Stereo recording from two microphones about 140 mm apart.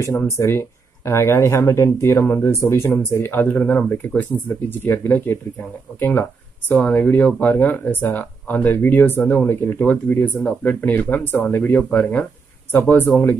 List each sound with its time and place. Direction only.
0.4 s speech: 20° left (ahead or behind)